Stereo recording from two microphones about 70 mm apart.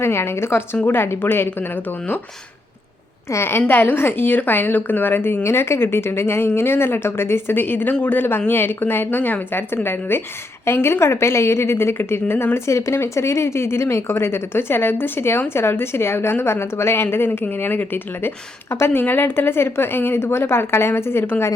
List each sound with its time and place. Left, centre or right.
0.0 s a woman's voice: left
3.3 s a woman's voice: left